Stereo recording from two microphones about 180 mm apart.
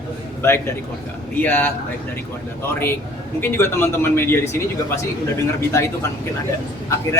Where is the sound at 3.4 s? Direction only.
10° left (ahead or behind).